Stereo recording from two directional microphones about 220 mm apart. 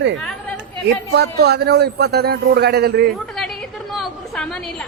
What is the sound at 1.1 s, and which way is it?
A man's voice, 50° right (ahead or behind).